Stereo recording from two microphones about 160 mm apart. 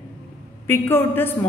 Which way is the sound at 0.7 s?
15° left (ahead or behind).